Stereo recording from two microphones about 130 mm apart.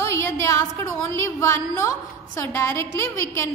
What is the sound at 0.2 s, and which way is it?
A woman's voice, 20° left (ahead or behind).